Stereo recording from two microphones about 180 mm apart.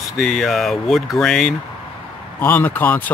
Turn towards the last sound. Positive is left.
turn(degrees=10)  # may be behind; listen again after turning